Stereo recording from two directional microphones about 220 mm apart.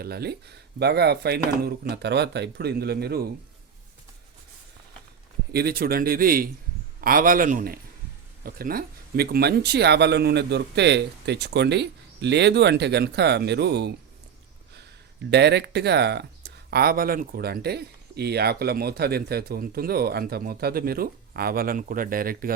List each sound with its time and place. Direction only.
0.0 s speech: 45° right (ahead or behind)
5.5 s a man's voice: 45° right (ahead or behind)
15.3 s speech: 50° right (ahead or behind)